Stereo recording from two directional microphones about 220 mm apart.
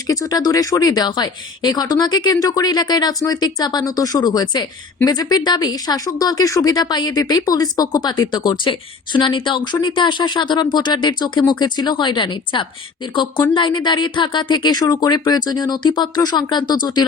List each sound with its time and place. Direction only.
0.1 s speech: 15° left (ahead or behind)